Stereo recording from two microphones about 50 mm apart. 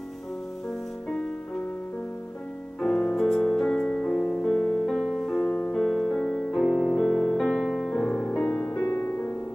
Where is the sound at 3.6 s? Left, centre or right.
Centre.